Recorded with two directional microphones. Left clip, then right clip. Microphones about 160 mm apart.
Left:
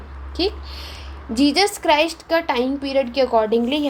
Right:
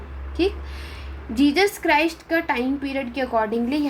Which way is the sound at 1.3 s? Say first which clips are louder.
Left 2 dB; 40° left (ahead or behind).